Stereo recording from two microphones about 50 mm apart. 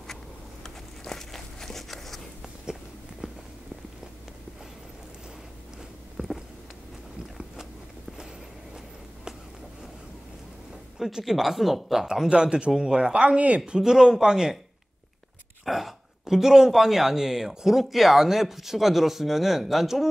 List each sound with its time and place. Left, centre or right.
0.7 s walk: centre
2.6 s a sound: centre
6.1 s a sound: centre
11.0 s speech: centre
12.3 s speech: centre
13.7 s speech: centre
15.6 s speech: centre